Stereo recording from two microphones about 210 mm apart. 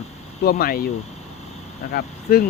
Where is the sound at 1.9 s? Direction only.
45° left (ahead or behind).